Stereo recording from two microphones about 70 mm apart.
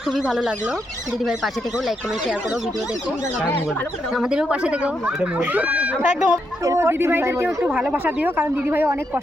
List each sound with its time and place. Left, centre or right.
0.1 s speech: centre
4.1 s speech: centre
6.7 s speech: right
7.4 s speech: centre
7.9 s speech: right